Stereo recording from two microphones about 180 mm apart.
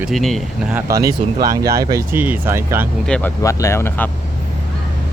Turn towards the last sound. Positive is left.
turn(degrees=15)  # may be behind; listen again after turning